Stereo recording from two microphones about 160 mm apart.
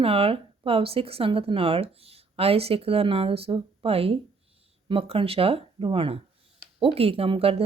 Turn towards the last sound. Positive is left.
turn(degrees=-35)  # may be behind; listen again after turning